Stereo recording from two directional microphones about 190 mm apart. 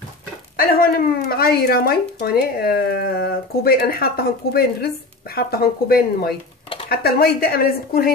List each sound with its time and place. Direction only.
0.6 s speech: 50° left (ahead or behind)